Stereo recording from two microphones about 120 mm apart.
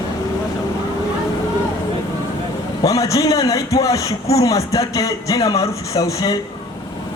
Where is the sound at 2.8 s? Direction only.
30° left (ahead or behind).